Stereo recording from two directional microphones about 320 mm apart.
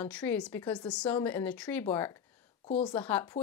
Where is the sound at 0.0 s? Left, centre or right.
Centre.